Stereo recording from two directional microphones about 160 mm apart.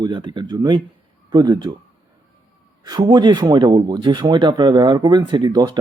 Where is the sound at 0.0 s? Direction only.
30° right (ahead or behind).